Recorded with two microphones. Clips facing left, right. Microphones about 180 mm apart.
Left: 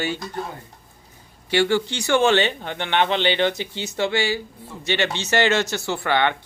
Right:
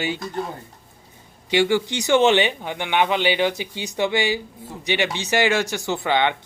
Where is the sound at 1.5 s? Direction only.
15° right (ahead or behind).